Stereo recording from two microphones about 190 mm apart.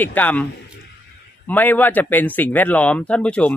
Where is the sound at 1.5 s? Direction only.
10° left (ahead or behind).